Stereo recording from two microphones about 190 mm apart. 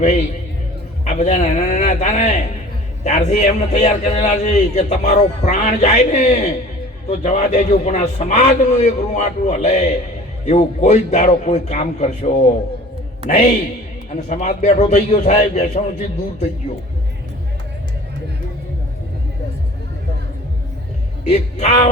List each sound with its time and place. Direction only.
1.0 s a man's voice: 40° left (ahead or behind)
21.2 s a man's voice: 35° left (ahead or behind)